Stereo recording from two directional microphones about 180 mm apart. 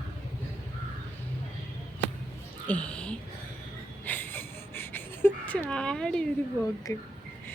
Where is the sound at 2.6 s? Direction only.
5° left (ahead or behind).